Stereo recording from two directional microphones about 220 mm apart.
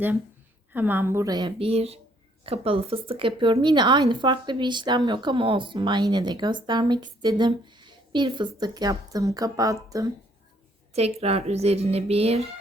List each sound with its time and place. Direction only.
0.7 s a woman's voice: 10° right (ahead or behind)
10.9 s a woman's voice: 30° right (ahead or behind)